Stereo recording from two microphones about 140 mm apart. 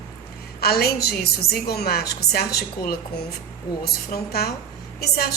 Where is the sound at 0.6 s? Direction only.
90° left.